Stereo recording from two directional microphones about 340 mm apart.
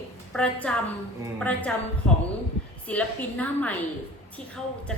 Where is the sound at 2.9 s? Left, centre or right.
Centre.